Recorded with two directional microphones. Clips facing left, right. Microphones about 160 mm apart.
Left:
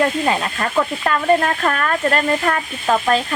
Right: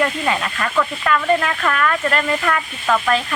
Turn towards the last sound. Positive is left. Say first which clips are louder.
# left 1 dB
turn(degrees=30)  # may be behind; listen again after turning